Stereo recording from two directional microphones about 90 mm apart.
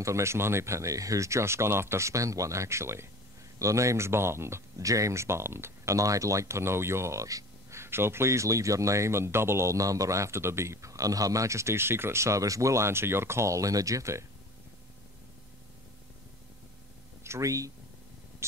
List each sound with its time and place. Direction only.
0.0 s speech: 30° right (ahead or behind)
17.2 s speech: 35° right (ahead or behind)